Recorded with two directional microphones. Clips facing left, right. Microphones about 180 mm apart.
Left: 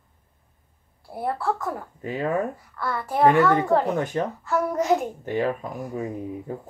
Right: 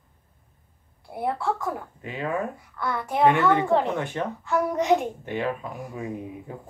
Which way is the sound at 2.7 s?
5° left (ahead or behind).